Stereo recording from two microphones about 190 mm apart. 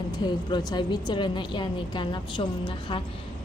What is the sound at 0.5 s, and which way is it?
A woman's voice, 25° left (ahead or behind).